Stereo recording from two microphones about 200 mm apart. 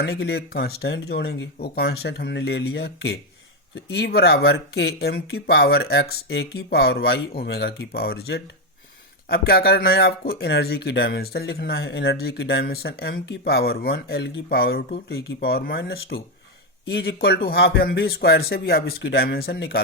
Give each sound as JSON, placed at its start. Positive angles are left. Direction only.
{"t": 0.0, "sound": "speech", "side_deg": 55}